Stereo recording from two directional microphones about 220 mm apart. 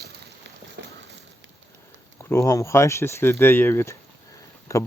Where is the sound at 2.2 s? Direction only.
10° left (ahead or behind).